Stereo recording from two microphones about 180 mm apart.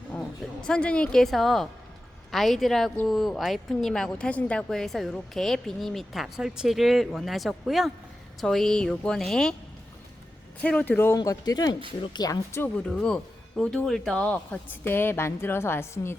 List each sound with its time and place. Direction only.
0.1 s a woman's voice: 5° left (ahead or behind)
10.6 s speech: 10° left (ahead or behind)
11.2 s speech: 20° left (ahead or behind)